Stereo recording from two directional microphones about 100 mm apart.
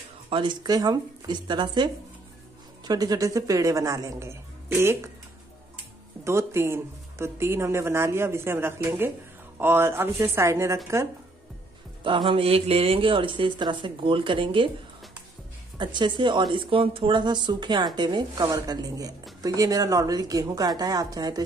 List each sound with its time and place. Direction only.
0.3 s a woman's voice: 50° right (ahead or behind); by 5.1 s 25° right (ahead or behind)
6.2 s speech: 25° right (ahead or behind)
12.0 s speech: 55° right (ahead or behind)
15.8 s a woman's voice: 50° right (ahead or behind)